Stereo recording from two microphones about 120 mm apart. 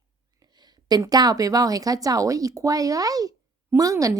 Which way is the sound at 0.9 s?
35° right (ahead or behind).